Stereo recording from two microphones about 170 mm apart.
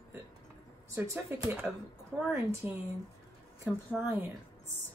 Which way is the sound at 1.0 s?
20° right (ahead or behind).